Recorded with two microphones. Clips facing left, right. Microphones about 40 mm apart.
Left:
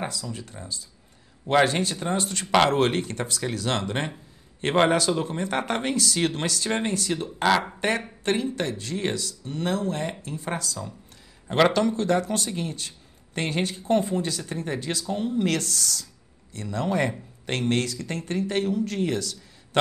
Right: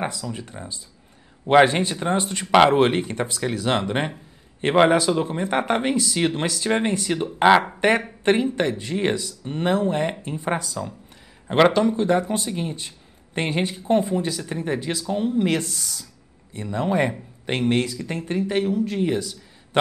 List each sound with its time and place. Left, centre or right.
0.0 s speech: right